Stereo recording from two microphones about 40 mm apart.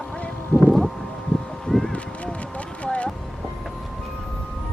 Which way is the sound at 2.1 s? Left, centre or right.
Left.